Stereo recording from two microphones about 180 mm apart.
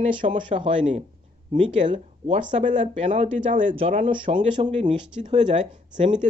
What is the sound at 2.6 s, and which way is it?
Speech, 40° right (ahead or behind).